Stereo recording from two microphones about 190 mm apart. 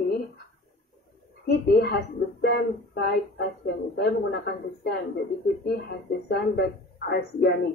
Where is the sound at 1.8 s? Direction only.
60° left (ahead or behind).